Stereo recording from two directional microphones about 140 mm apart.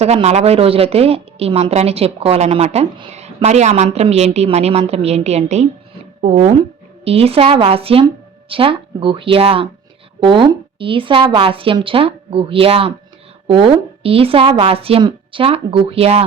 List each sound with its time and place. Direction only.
0.0 s a woman's voice: 50° right (ahead or behind)